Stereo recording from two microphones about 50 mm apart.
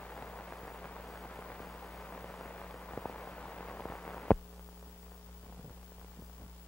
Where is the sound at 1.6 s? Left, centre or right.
Left.